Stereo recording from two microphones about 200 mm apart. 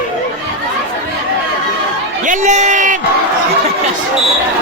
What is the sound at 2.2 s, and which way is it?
Speech, 40° right (ahead or behind).